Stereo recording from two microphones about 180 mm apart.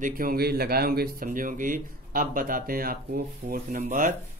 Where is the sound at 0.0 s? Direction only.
55° right (ahead or behind).